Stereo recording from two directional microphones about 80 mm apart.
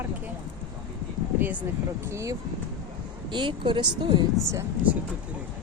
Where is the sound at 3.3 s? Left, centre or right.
Right.